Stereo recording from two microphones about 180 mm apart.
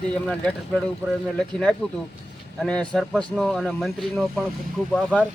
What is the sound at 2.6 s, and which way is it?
Speech, 5° left (ahead or behind).